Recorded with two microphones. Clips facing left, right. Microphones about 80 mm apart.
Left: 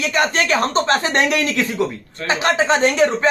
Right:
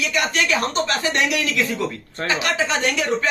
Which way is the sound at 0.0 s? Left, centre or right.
Left.